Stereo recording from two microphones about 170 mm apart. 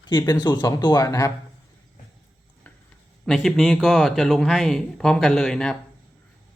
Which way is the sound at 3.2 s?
Centre (ahead or behind).